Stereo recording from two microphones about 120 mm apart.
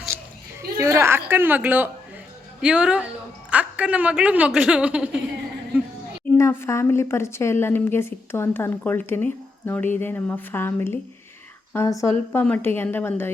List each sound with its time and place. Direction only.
0.1 s children playing: 20° right (ahead or behind)
0.8 s a sound: 25° right (ahead or behind)
2.6 s speech: 10° right (ahead or behind)
6.3 s a woman's voice: 20° left (ahead or behind)